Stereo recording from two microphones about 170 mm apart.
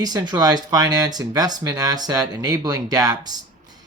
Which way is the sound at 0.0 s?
25° right (ahead or behind).